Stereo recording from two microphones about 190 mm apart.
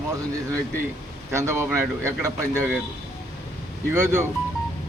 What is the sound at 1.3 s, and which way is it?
A man's voice, 15° right (ahead or behind).